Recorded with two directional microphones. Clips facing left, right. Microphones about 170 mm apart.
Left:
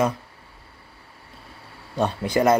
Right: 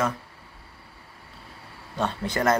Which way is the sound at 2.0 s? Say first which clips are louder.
Left 5 dB; 10° left (ahead or behind).